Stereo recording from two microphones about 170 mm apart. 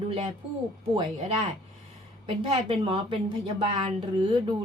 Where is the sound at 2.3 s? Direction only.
30° right (ahead or behind).